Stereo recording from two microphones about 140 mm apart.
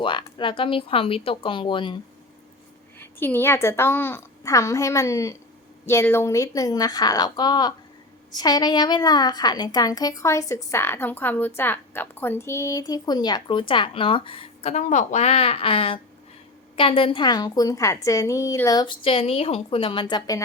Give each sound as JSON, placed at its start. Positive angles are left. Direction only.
{"t": 0.0, "sound": "speech", "side_deg": 35}
{"t": 3.0, "sound": "a woman's voice", "side_deg": 15}
{"t": 19.0, "sound": "speech", "side_deg": 40}